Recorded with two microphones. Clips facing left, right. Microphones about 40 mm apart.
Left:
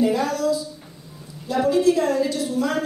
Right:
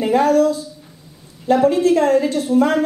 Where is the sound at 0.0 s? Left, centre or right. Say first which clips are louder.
Right 6 dB; right.